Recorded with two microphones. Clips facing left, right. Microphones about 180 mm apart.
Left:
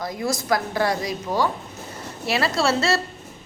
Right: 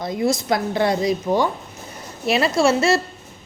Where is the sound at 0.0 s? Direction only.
25° right (ahead or behind).